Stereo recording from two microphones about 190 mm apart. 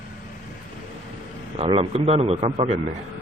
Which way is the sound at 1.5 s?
30° right (ahead or behind).